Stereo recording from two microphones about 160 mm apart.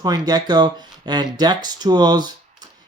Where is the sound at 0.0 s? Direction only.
25° right (ahead or behind).